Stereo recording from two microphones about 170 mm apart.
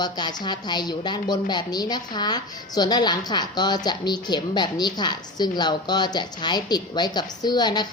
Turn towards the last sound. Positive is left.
turn(degrees=25)  # may be behind; listen again after turning